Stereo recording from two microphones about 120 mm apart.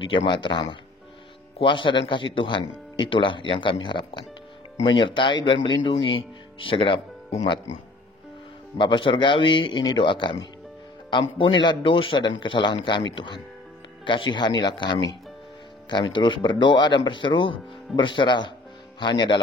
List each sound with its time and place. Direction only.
0.0 s speech: 45° left (ahead or behind)
8.7 s speech: 45° left (ahead or behind)